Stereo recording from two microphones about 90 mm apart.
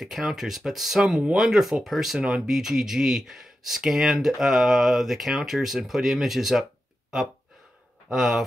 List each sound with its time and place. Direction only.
0.0 s speech: 5° right (ahead or behind)
8.1 s speech: 5° right (ahead or behind)